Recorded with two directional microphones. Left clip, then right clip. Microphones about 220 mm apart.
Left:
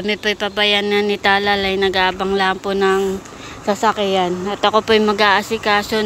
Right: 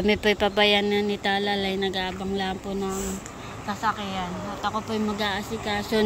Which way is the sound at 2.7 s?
25° left (ahead or behind).